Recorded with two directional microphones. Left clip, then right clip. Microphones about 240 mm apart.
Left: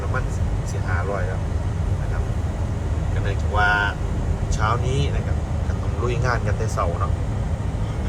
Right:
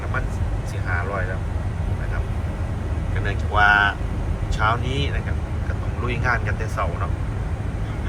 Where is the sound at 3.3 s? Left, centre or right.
Centre.